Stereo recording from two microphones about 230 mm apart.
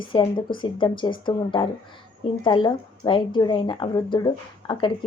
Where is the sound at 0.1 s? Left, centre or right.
Left.